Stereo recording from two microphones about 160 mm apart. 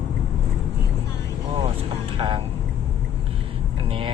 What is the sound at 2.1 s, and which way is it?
Vehicle, 30° right (ahead or behind).